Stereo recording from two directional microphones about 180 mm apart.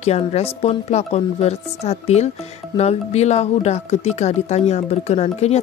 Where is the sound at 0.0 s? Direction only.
35° left (ahead or behind).